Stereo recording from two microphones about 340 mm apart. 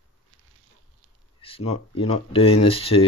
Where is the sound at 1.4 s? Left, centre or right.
Centre.